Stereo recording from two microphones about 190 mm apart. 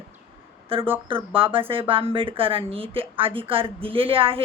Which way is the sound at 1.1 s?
30° right (ahead or behind).